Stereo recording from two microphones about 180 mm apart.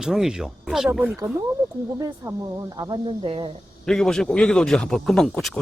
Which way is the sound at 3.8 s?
5° left (ahead or behind).